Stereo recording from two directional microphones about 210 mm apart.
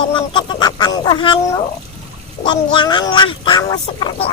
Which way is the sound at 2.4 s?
20° left (ahead or behind).